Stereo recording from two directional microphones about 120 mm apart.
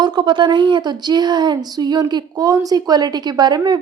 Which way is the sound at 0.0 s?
40° right (ahead or behind).